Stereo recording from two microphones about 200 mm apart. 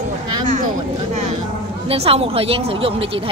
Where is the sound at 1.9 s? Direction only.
30° right (ahead or behind).